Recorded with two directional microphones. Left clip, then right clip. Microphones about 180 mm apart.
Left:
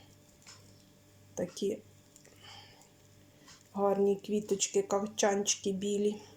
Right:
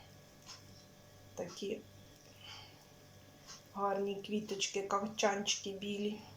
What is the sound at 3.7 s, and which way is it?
Speech, 30° left (ahead or behind).